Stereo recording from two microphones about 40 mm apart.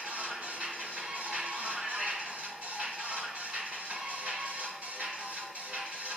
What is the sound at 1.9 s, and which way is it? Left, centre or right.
Music, right.